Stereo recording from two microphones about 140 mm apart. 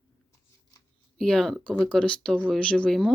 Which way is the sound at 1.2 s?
5° left (ahead or behind).